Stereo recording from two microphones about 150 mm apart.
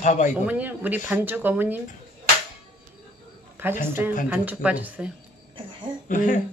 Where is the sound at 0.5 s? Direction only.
10° right (ahead or behind).